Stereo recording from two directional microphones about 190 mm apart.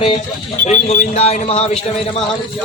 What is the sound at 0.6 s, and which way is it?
A man's voice, 35° left (ahead or behind).